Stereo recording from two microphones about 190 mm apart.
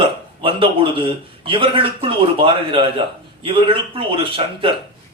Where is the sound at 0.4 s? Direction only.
30° right (ahead or behind).